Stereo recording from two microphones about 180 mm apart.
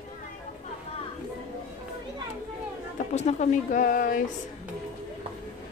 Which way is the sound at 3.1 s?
40° left (ahead or behind).